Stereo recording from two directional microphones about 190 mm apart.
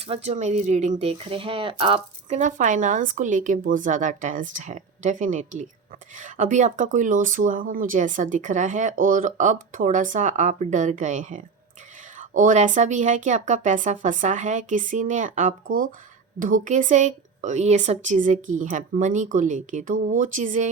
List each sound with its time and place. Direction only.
0.0 s speech: 35° right (ahead or behind)